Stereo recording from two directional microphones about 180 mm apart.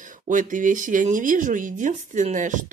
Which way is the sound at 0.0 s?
45° right (ahead or behind).